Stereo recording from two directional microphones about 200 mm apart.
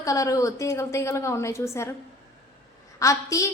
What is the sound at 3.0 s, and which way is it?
Speech, 15° left (ahead or behind).